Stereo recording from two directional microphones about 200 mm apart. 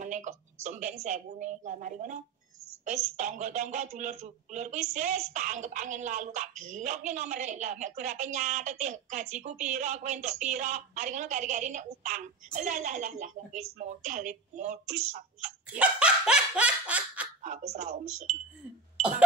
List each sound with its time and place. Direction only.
0.0 s a woman's voice: 35° right (ahead or behind)
15.8 s dog: 5° right (ahead or behind)
17.4 s speech: 40° right (ahead or behind)
18.9 s a sound: 5° right (ahead or behind)